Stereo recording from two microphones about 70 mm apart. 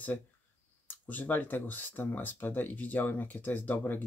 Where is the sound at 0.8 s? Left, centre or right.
Left.